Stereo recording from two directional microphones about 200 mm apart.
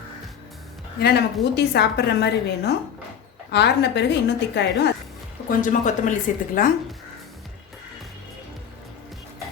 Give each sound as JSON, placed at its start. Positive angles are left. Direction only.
{"t": 0.9, "sound": "a woman's voice", "side_deg": 55}
{"t": 5.5, "sound": "a woman's voice", "side_deg": 40}